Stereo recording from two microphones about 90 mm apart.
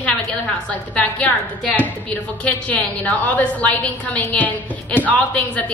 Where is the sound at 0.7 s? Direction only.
15° left (ahead or behind).